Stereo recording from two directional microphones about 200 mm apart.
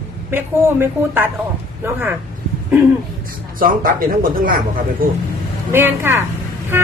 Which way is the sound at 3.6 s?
45° right (ahead or behind).